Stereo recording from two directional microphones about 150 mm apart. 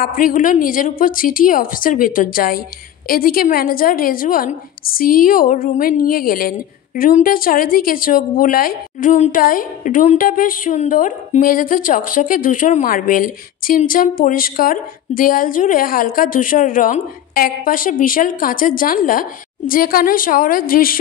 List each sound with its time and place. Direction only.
0.0 s a woman's voice: 70° left (ahead or behind)
7.0 s a woman's voice: 70° left (ahead or behind)